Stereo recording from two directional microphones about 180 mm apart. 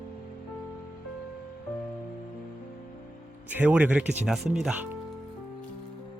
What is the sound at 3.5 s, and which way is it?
Speech, 10° right (ahead or behind).